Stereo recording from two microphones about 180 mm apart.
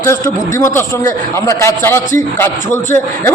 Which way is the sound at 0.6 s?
15° left (ahead or behind).